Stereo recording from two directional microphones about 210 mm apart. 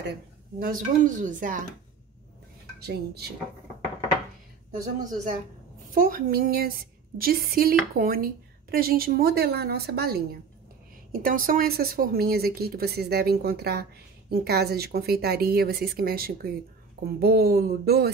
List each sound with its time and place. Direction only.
0.6 s speech: 40° right (ahead or behind)
2.8 s a woman's voice: 50° right (ahead or behind)
5.9 s a woman's voice: 40° right (ahead or behind)